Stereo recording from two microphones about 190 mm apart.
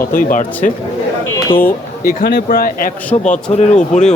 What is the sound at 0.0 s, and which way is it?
Speech, 50° left (ahead or behind).